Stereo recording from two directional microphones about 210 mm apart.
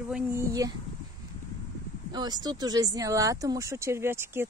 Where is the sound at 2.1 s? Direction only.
20° right (ahead or behind).